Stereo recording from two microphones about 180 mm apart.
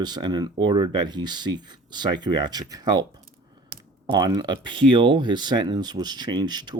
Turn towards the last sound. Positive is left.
turn(degrees=-25)  # may be behind; listen again after turning